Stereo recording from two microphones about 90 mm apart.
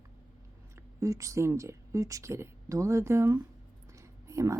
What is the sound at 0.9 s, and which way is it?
A woman's voice, 35° right (ahead or behind).